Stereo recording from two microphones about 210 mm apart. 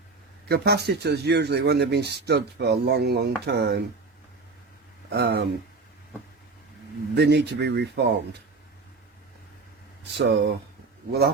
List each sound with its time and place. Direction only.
0.4 s speech: 50° right (ahead or behind)
5.1 s speech: 50° right (ahead or behind)
7.2 s speech: 50° right (ahead or behind)
10.2 s speech: 55° right (ahead or behind)